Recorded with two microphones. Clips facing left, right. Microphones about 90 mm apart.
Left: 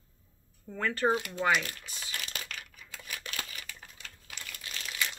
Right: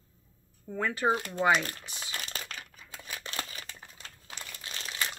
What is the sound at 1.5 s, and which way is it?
Crumpling, 35° right (ahead or behind).